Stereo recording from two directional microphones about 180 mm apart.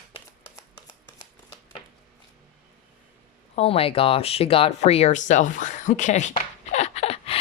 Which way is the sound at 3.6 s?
30° left (ahead or behind).